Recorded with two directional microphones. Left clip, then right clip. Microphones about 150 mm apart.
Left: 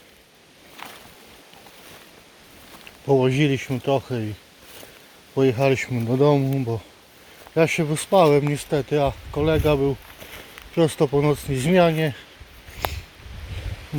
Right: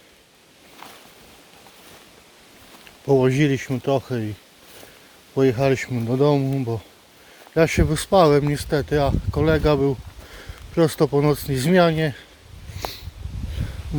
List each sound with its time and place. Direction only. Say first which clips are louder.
3.1 s speech: right 1 dB; 40° right (ahead or behind)
5.3 s speech: even; 35° right (ahead or behind)
7.5 s speech: right 1 dB; 40° right (ahead or behind)